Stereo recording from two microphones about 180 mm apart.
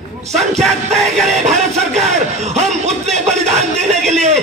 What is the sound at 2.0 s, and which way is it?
Speech, 40° right (ahead or behind).